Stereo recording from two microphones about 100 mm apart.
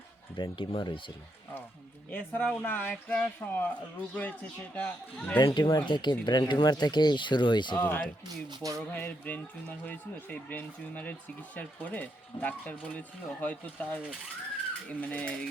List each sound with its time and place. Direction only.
0.3 s speech: 55° left (ahead or behind)
2.0 s speech: 15° left (ahead or behind)
5.5 s speech: 60° left (ahead or behind)
5.7 s speech: 50° left (ahead or behind)
7.9 s speech: 15° left (ahead or behind)
8.4 s speech: 35° right (ahead or behind)
8.9 s speech: 15° left (ahead or behind)